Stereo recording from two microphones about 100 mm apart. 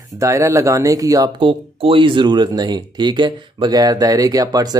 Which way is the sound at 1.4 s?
65° right (ahead or behind).